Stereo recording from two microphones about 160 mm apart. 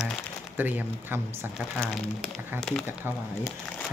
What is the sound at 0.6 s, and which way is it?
Speech, 10° right (ahead or behind).